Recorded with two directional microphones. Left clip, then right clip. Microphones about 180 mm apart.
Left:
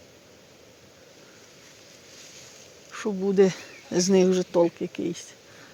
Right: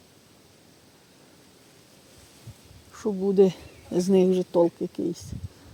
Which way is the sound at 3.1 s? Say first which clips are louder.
Right 1 dB; centre (ahead or behind).